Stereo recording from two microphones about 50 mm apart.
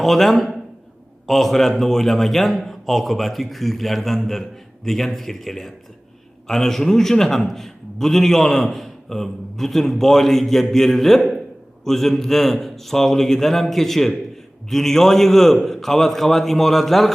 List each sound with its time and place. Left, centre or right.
0.0 s a man's voice: centre